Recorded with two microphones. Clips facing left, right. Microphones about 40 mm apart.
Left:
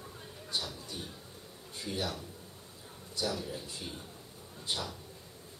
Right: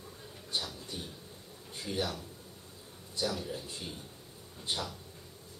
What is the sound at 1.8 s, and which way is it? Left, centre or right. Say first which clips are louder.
Speech: right 2 dB; centre.